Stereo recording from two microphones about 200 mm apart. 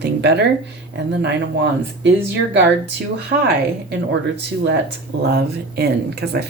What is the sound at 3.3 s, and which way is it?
Speech, 55° right (ahead or behind).